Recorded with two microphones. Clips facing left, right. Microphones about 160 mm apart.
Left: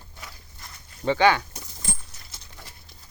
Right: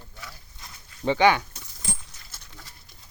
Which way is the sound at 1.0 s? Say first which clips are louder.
Even; 15° right (ahead or behind).